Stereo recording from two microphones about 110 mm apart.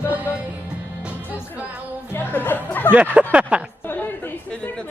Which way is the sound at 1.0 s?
15° right (ahead or behind).